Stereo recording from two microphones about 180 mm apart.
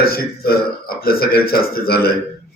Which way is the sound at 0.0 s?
60° left (ahead or behind).